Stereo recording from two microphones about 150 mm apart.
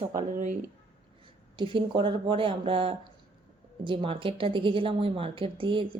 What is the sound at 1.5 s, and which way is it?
A woman's voice, 35° right (ahead or behind).